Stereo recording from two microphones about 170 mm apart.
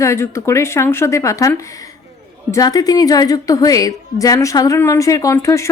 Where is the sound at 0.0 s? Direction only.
15° left (ahead or behind).